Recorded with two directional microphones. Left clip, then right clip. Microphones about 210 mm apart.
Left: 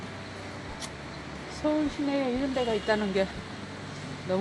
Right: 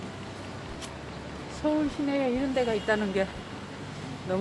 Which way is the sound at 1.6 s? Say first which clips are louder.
Even; 20° left (ahead or behind).